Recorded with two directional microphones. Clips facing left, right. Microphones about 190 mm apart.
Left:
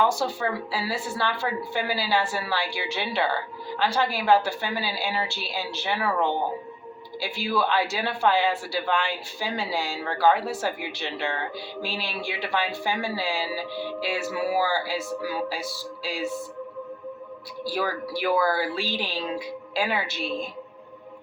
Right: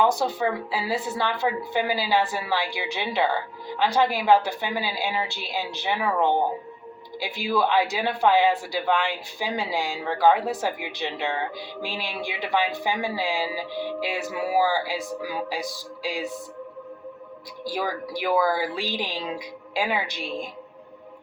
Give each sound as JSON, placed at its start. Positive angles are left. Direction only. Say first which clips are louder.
{"t": 0.0, "sound": "speech", "louder": "right 2 dB", "side_deg": -20}
{"t": 17.6, "sound": "speech", "louder": "left 1 dB", "side_deg": -15}